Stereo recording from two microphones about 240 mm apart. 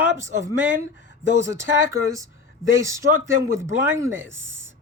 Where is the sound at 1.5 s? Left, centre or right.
Centre.